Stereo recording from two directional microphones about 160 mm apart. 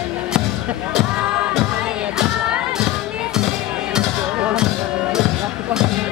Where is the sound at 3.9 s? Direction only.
5° right (ahead or behind).